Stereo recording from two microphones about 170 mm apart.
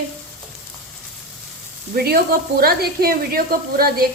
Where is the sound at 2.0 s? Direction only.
65° right (ahead or behind).